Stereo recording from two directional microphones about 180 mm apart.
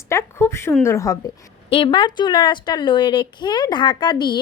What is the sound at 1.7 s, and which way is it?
Speech, 30° left (ahead or behind).